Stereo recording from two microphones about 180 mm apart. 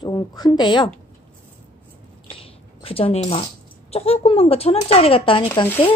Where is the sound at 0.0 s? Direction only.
20° left (ahead or behind).